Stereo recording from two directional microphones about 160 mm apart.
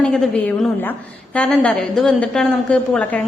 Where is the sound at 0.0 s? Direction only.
5° left (ahead or behind).